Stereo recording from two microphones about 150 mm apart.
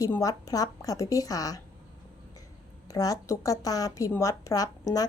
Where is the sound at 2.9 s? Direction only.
25° left (ahead or behind).